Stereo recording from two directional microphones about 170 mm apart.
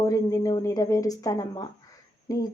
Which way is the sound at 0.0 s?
20° left (ahead or behind).